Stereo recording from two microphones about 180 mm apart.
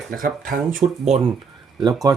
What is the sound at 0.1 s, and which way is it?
Speech, 50° right (ahead or behind).